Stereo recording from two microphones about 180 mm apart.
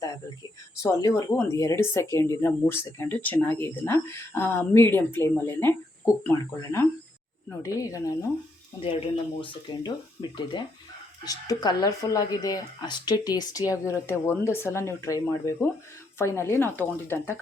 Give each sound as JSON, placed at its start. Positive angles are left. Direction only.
{"t": 0.8, "sound": "speech", "side_deg": 15}
{"t": 8.8, "sound": "speech", "side_deg": 30}